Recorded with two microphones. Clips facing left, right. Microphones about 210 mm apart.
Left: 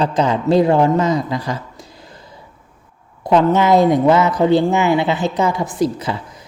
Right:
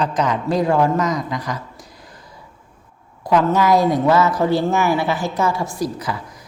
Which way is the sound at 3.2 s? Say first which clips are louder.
Left 3 dB; 25° left (ahead or behind).